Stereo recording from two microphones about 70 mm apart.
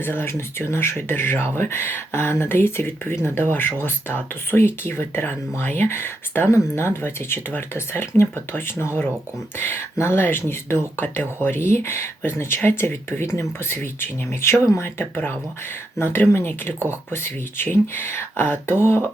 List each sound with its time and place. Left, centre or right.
0.0 s speech: left